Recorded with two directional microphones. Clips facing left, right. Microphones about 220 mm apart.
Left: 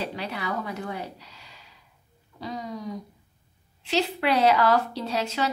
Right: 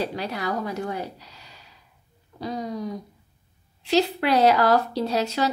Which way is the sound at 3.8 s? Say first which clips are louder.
Right 4 dB; 40° right (ahead or behind).